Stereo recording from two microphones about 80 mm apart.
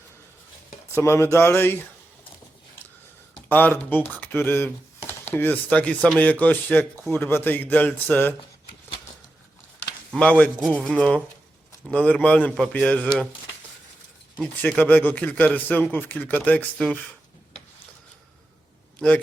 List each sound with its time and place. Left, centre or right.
0.9 s speech: left
3.5 s speech: left
10.2 s a man's voice: centre
14.8 s speech: left
18.9 s a man's voice: centre